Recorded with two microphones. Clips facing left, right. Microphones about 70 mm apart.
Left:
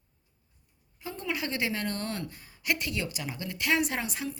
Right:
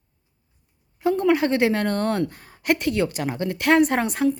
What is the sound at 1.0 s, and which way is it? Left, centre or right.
A woman's voice, right.